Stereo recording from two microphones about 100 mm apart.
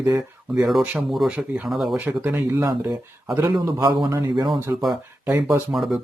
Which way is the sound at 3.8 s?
25° right (ahead or behind).